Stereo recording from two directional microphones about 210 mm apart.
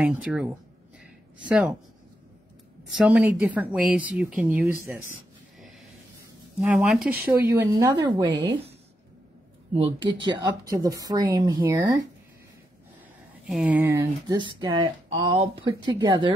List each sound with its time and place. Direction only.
0.0 s speech: 5° right (ahead or behind)
1.5 s speech: 5° right (ahead or behind)
2.9 s speech: 5° right (ahead or behind)
6.6 s speech: 5° right (ahead or behind)
9.8 s speech: 20° right (ahead or behind)
13.5 s speech: 5° right (ahead or behind); by 16.3 s 20° right (ahead or behind)